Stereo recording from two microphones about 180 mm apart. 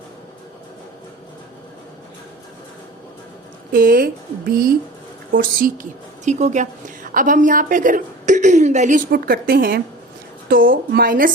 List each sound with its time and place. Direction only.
3.7 s a woman's voice: 50° right (ahead or behind)
6.2 s a woman's voice: 40° right (ahead or behind)